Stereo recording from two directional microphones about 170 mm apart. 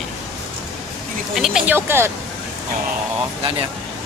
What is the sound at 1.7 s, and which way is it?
Speech, 15° right (ahead or behind).